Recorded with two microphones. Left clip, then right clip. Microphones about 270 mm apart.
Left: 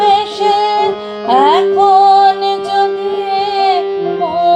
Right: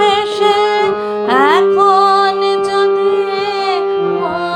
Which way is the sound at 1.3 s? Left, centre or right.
Centre.